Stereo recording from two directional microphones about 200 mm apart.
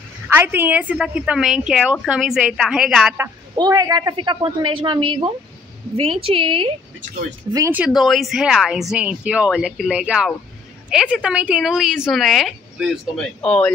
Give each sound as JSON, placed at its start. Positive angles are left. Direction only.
{"t": 0.3, "sound": "a woman's voice", "side_deg": -10}
{"t": 3.5, "sound": "a woman's voice", "side_deg": -20}
{"t": 7.5, "sound": "a woman's voice", "side_deg": -10}